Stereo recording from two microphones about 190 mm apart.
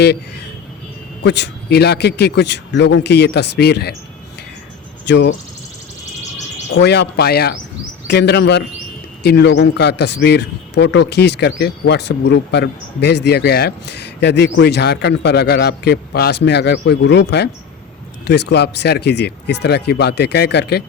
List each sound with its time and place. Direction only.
1.2 s a man's voice: 60° left (ahead or behind)
5.0 s speech: 65° left (ahead or behind)
6.7 s a man's voice: 65° left (ahead or behind)